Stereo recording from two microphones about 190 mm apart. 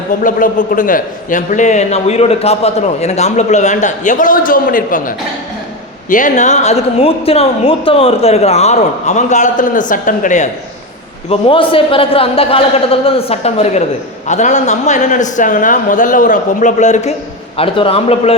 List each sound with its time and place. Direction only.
0.2 s a man's voice: 45° left (ahead or behind)
11.3 s a man's voice: 30° left (ahead or behind)